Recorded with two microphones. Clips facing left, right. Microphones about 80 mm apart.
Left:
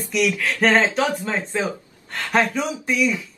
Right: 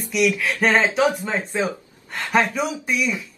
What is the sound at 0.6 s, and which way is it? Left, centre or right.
Speech, centre.